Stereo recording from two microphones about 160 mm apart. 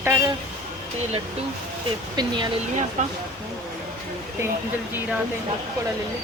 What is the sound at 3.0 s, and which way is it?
Speech, 50° right (ahead or behind).